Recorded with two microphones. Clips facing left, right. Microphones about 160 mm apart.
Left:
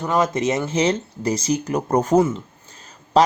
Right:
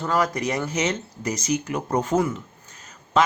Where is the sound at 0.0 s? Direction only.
20° left (ahead or behind).